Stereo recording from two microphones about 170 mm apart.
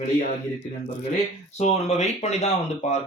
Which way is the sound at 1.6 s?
40° left (ahead or behind).